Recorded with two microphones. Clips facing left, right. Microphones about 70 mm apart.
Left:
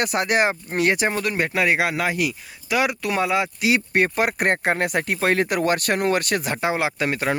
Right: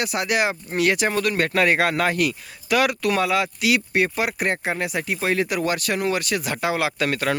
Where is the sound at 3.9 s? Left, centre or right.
Left.